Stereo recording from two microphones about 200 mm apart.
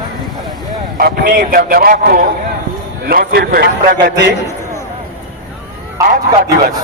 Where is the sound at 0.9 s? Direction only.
50° right (ahead or behind).